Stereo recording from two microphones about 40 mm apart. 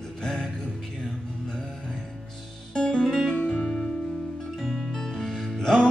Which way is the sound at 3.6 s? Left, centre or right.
Centre.